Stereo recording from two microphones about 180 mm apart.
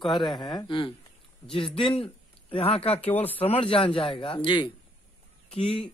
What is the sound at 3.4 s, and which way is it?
Speech, 35° left (ahead or behind).